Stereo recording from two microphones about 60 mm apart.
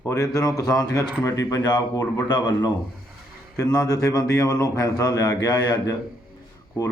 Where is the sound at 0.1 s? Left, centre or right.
Left.